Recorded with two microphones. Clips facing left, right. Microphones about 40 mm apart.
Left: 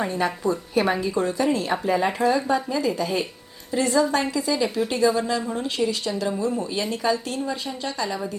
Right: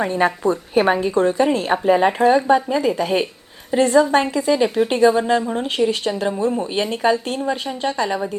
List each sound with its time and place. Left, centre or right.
0.0 s a woman's voice: right